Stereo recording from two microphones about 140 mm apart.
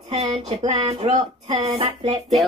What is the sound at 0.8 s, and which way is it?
Speech, 35° right (ahead or behind).